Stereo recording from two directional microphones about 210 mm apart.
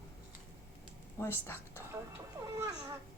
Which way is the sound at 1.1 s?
10° left (ahead or behind).